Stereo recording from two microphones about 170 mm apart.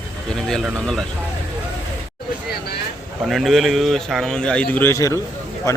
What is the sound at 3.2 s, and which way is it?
A man's voice, centre (ahead or behind).